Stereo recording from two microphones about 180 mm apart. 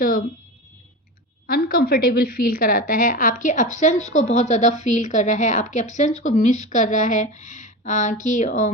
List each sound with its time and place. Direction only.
1.5 s a woman's voice: 55° left (ahead or behind)